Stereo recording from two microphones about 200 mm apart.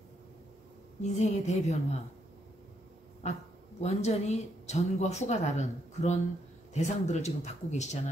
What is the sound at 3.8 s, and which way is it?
Speech, 35° left (ahead or behind).